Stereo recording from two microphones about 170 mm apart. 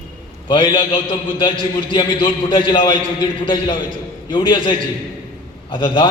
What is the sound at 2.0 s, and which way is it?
A man's voice, 30° left (ahead or behind).